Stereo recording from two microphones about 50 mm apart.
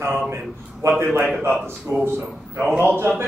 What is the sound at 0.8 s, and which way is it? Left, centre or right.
Speech, right.